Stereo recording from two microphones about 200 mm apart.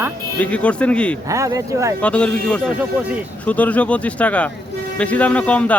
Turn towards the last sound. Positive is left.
turn(degrees=5)  # may be behind; listen again after turning